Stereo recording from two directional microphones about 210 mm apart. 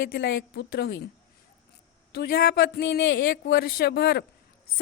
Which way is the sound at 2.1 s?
50° left (ahead or behind).